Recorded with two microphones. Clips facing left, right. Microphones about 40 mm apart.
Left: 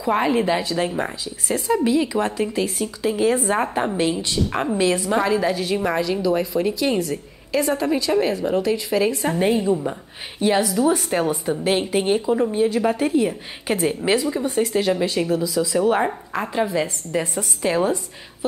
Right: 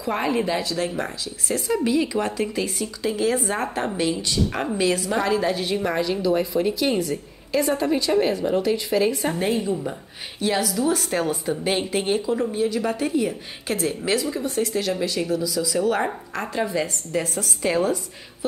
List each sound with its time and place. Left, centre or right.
0.0 s a woman's voice: centre
5.5 s a woman's voice: centre
9.4 s a woman's voice: centre
12.6 s a woman's voice: left
16.0 s a woman's voice: centre